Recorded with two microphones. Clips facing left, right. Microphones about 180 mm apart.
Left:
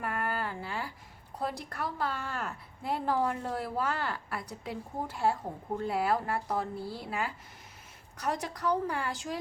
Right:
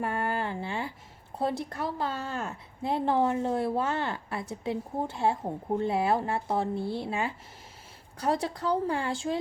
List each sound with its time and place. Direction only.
0.0 s a woman's voice: 25° right (ahead or behind)